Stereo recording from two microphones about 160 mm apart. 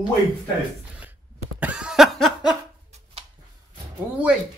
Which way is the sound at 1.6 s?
5° right (ahead or behind).